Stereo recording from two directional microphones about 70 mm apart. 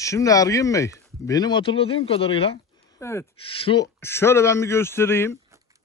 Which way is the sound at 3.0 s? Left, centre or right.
Left.